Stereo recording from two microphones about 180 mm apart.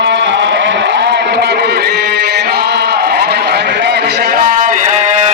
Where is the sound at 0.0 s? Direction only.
80° right.